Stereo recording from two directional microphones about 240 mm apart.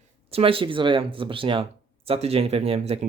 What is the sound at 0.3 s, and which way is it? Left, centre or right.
Speech, right.